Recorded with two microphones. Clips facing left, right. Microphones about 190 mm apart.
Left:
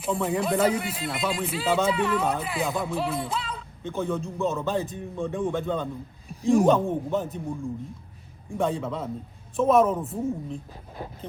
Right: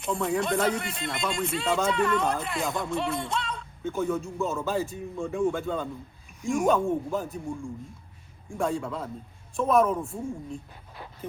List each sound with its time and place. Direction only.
0.0 s speech: centre (ahead or behind)
6.2 s a sound: 35° left (ahead or behind)
6.7 s speech: centre (ahead or behind)
8.4 s speech: centre (ahead or behind)
10.5 s speech: 40° left (ahead or behind)